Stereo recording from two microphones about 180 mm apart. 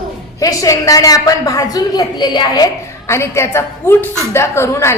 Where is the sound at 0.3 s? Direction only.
20° left (ahead or behind).